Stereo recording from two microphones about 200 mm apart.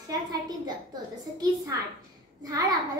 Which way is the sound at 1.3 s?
20° right (ahead or behind).